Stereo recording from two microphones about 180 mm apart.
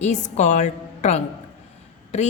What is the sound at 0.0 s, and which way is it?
Mantra, 40° left (ahead or behind).